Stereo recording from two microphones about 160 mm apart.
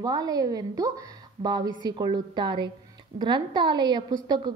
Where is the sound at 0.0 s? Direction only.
25° right (ahead or behind).